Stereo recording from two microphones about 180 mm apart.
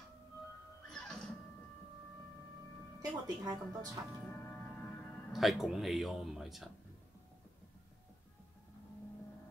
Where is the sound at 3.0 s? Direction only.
20° right (ahead or behind).